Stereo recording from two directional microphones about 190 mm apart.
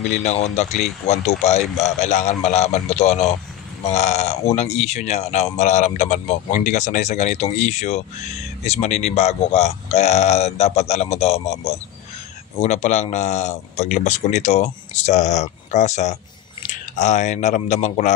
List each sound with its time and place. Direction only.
0.2 s speech: 35° left (ahead or behind)